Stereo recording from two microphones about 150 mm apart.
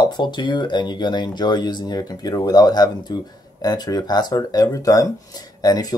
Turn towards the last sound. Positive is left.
turn(degrees=25)  # may be behind; listen again after turning